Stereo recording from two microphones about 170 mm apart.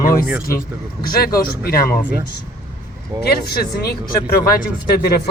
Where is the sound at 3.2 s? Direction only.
70° left (ahead or behind).